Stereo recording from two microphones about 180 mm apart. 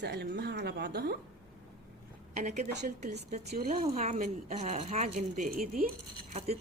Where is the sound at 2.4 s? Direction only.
40° right (ahead or behind).